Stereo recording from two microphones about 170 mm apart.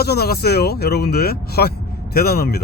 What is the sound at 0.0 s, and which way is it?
Speech, 70° left (ahead or behind).